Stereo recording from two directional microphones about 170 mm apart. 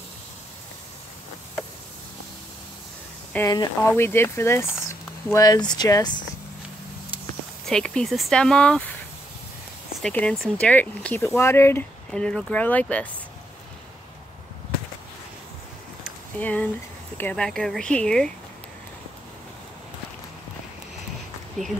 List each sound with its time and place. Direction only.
3.3 s speech: 20° left (ahead or behind)
7.6 s speech: 5° left (ahead or behind)
10.0 s speech: 5° left (ahead or behind)
16.3 s speech: 10° left (ahead or behind)